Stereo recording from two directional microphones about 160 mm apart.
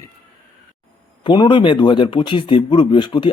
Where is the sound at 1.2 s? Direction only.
30° left (ahead or behind).